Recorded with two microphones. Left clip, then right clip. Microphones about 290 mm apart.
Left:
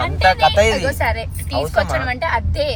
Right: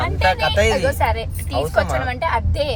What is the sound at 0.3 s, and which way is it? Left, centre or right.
Speech, centre.